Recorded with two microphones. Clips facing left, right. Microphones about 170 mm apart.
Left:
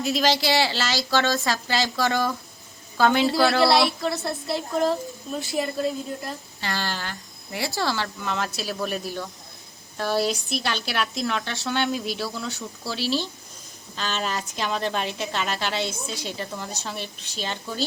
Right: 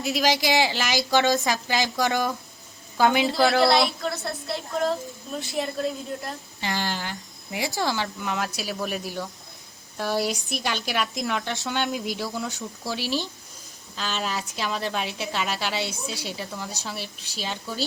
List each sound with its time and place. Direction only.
0.0 s speech: 15° right (ahead or behind)
3.2 s speech: centre (ahead or behind)
6.6 s speech: 15° right (ahead or behind)
13.9 s speech: 5° right (ahead or behind)